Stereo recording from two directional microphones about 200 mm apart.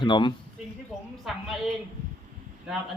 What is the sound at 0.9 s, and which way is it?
Speech, centre (ahead or behind).